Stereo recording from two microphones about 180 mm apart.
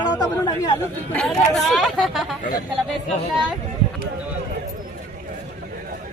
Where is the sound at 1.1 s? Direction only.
5° left (ahead or behind).